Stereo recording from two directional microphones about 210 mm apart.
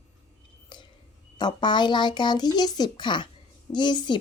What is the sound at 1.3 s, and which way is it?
Speech, 20° left (ahead or behind).